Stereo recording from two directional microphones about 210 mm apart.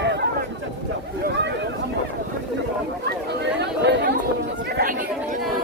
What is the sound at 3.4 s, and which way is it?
Chatter, 55° right (ahead or behind).